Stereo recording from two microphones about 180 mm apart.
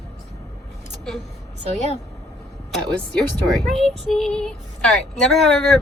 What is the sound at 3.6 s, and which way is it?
Speech, centre (ahead or behind).